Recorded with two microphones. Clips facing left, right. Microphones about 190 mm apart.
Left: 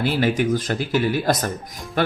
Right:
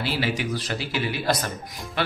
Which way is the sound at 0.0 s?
50° left (ahead or behind).